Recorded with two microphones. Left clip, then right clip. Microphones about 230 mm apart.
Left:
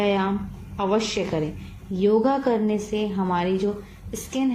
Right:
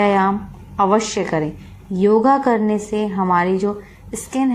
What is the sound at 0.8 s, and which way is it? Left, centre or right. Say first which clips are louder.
A woman's voice: right 7 dB; right.